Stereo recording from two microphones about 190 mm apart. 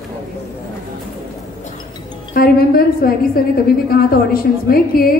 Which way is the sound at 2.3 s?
50° left (ahead or behind).